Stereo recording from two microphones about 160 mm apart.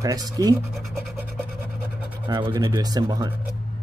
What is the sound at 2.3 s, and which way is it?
Speech, 25° right (ahead or behind).